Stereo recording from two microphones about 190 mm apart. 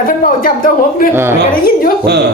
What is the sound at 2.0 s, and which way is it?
Speech, 60° right (ahead or behind).